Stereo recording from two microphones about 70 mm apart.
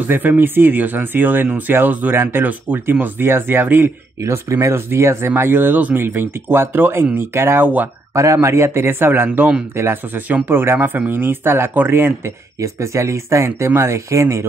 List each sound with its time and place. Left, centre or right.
0.0 s speech: right
4.2 s speech: right
7.6 s speech: right
8.1 s speech: right
12.5 s speech: right